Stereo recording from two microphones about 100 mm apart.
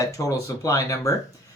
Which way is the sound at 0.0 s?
35° left (ahead or behind).